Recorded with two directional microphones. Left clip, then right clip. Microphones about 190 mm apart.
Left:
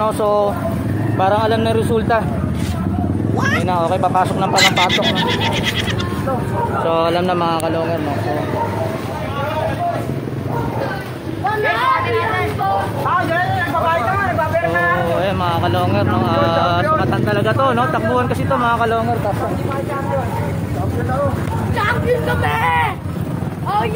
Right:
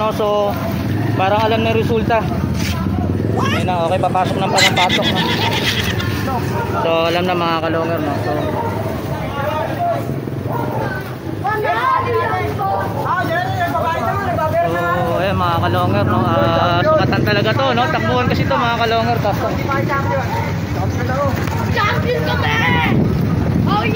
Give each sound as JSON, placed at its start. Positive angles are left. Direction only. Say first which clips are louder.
{"t": 0.0, "sound": "speech", "louder": "left 1 dB", "side_deg": 10}
{"t": 3.7, "sound": "speech", "louder": "even", "side_deg": 15}
{"t": 4.6, "sound": "speech", "louder": "even", "side_deg": 0}
{"t": 6.9, "sound": "speech", "louder": "right 1 dB", "side_deg": 15}
{"t": 15.1, "sound": "speech", "louder": "right 1 dB", "side_deg": 5}
{"t": 22.6, "sound": "vehicle", "louder": "left 1 dB", "side_deg": 45}